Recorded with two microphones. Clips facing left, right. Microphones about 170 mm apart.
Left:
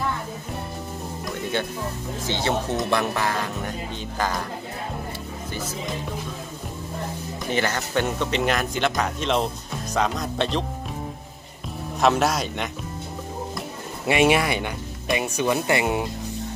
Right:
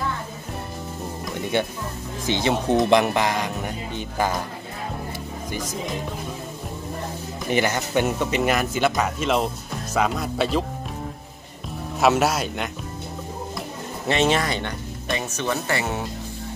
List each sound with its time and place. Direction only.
2.2 s speech: 15° right (ahead or behind)
7.5 s speech: 15° right (ahead or behind)
12.0 s speech: 5° right (ahead or behind)
14.0 s speech: 10° left (ahead or behind)